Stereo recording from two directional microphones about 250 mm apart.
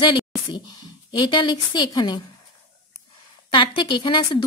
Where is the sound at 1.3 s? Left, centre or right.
Centre.